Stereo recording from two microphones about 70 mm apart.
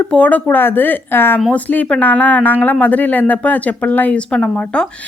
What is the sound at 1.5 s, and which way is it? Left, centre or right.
Speech, left.